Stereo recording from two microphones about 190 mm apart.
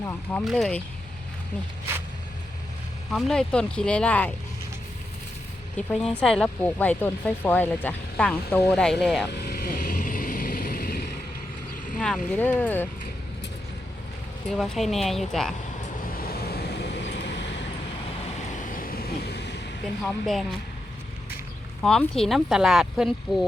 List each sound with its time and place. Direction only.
0.0 s speech: 10° left (ahead or behind)
3.1 s speech: centre (ahead or behind)
5.7 s speech: 5° left (ahead or behind)
9.3 s vehicle: 55° left (ahead or behind)
11.9 s speech: 5° left (ahead or behind)
14.5 s speech: centre (ahead or behind)
16.0 s vehicle: 50° left (ahead or behind); by 17.3 s 65° left (ahead or behind)
18.5 s vehicle: 45° left (ahead or behind); by 19.6 s 60° left (ahead or behind)
20.1 s speech: centre (ahead or behind)
21.8 s speech: 5° left (ahead or behind)